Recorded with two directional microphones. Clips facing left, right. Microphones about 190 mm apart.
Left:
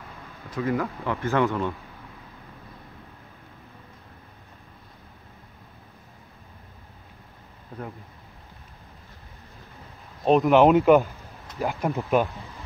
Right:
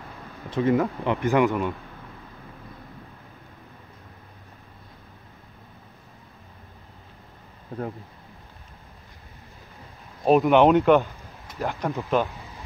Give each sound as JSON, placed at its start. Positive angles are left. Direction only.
{"t": 0.5, "sound": "speech", "side_deg": -25}
{"t": 10.2, "sound": "speech", "side_deg": 0}
{"t": 11.9, "sound": "speech", "side_deg": 15}